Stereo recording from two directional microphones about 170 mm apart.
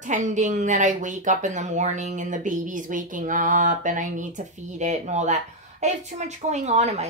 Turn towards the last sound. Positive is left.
turn(degrees=-40)  # may be behind; listen again after turning